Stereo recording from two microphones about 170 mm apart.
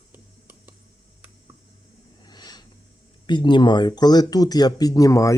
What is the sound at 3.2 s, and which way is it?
Speech, 25° left (ahead or behind).